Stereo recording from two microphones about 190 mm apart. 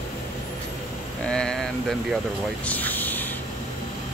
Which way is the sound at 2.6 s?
10° left (ahead or behind).